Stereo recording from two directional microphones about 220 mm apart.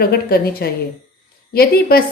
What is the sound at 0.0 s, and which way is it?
A woman's voice, 45° left (ahead or behind).